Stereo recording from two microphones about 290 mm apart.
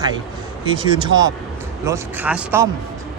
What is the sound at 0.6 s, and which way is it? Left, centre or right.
A man's voice, centre.